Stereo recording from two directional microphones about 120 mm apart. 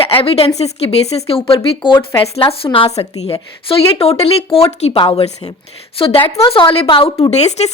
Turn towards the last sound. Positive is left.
turn(degrees=65)  # may be behind; listen again after turning